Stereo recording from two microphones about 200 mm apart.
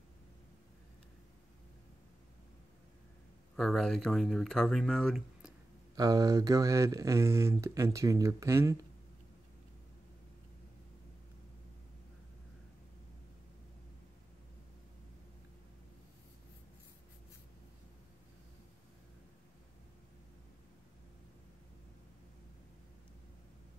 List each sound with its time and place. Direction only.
3.5 s speech: centre (ahead or behind)
5.9 s speech: 20° right (ahead or behind)